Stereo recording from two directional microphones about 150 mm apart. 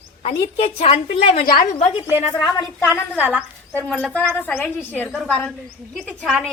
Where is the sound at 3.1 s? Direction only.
10° right (ahead or behind).